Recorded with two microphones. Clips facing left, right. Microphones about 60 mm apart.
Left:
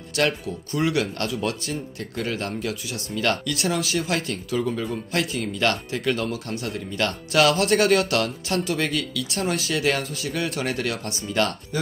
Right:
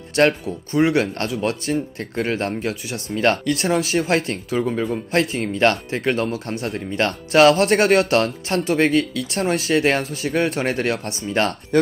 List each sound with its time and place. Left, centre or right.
0.2 s speech: right
11.7 s speech: right